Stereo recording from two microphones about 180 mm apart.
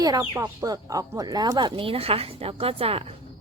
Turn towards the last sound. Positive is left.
turn(degrees=-30)  # may be behind; listen again after turning